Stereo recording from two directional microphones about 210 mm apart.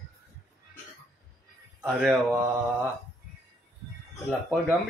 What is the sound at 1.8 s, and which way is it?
Speech, 5° right (ahead or behind).